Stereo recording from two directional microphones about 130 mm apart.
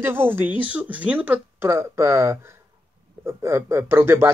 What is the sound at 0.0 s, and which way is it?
Speech, 15° right (ahead or behind).